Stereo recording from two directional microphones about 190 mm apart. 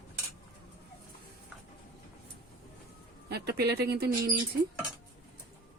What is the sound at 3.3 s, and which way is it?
Speech, 60° right (ahead or behind).